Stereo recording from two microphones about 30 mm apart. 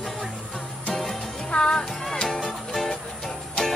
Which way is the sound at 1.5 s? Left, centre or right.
Left.